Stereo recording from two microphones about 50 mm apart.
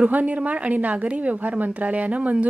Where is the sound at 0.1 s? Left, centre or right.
Right.